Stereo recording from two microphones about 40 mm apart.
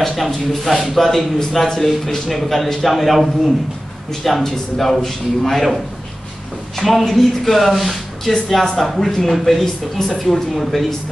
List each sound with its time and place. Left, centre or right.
0.1 s a man's voice: centre
6.8 s a man's voice: centre